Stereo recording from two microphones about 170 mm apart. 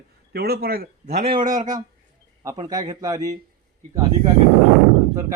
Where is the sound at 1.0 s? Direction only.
40° right (ahead or behind).